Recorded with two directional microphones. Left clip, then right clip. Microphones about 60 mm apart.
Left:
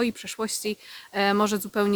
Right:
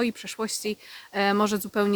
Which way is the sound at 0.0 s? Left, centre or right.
Centre.